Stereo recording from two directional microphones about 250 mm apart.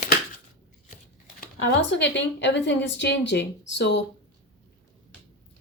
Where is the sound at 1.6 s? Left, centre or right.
Left.